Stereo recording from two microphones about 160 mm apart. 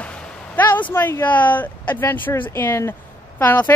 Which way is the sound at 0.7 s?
10° left (ahead or behind).